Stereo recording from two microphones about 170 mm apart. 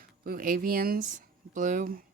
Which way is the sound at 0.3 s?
55° right (ahead or behind).